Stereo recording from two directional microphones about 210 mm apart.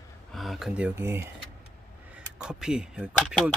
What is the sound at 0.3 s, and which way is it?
Speech, centre (ahead or behind).